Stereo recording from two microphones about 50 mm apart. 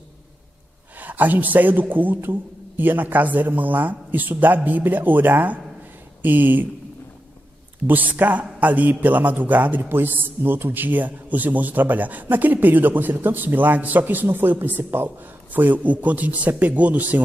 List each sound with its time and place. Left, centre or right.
0.9 s a man's voice: right
7.8 s a man's voice: right